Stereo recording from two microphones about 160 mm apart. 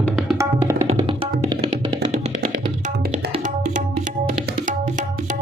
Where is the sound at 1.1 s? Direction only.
30° right (ahead or behind).